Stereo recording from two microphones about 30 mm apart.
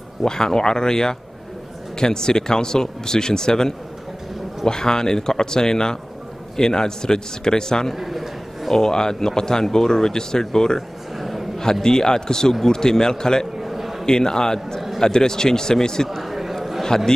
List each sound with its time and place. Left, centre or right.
0.2 s speech: left
7.9 s a man's voice: centre
8.6 s speech: centre
11.1 s a sound: centre
11.5 s speech: centre
13.6 s a sound: centre
14.0 s speech: left
16.2 s a sound: centre
16.8 s a man's voice: centre